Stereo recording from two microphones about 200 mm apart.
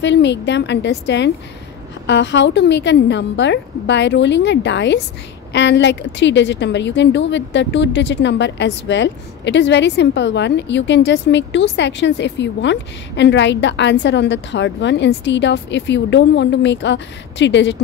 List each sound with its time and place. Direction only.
0.0 s a woman's voice: 60° left (ahead or behind)